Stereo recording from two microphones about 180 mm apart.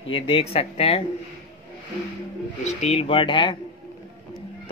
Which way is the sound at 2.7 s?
35° left (ahead or behind).